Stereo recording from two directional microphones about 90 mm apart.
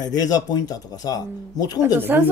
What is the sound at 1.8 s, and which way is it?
Speech, 25° right (ahead or behind).